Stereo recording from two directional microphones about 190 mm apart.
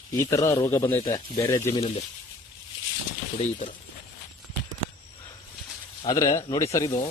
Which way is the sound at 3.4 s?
40° left (ahead or behind).